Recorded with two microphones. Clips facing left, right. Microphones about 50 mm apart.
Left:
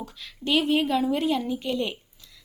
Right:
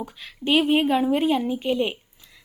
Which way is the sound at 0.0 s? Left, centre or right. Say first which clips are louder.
Right 4 dB; right.